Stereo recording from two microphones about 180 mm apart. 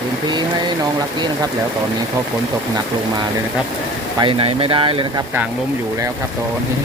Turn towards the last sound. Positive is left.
turn(degrees=-30)  # may be behind; listen again after turning